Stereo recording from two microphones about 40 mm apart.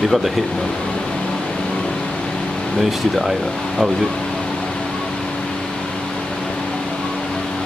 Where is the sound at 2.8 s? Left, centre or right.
Centre.